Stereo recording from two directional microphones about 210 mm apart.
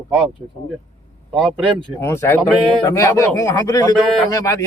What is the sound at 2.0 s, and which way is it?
Speech, 10° left (ahead or behind).